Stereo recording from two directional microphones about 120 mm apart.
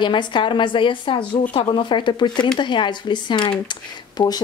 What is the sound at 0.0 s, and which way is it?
Speech, 40° left (ahead or behind).